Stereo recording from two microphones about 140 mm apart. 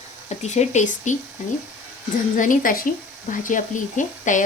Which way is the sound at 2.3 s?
70° left (ahead or behind).